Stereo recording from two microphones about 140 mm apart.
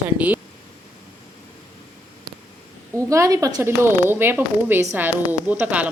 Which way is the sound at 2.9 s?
20° right (ahead or behind).